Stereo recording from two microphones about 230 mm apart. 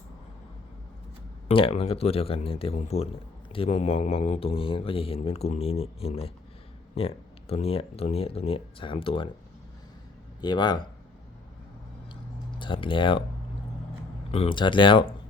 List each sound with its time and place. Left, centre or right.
1.5 s speech: left
10.4 s speech: centre
12.5 s speech: left
14.3 s speech: left